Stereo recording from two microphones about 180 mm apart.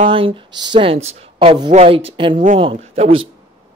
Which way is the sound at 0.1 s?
30° right (ahead or behind).